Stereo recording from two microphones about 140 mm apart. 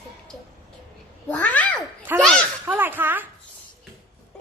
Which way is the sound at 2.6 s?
15° right (ahead or behind).